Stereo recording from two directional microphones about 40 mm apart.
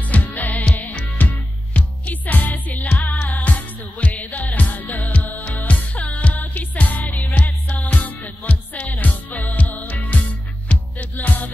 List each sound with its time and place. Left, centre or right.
0.0 s music: left